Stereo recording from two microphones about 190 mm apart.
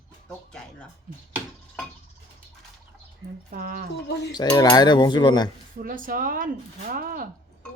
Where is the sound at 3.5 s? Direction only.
50° right (ahead or behind).